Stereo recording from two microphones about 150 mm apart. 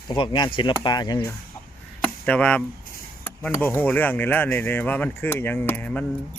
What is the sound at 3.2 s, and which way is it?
Speech, 15° left (ahead or behind).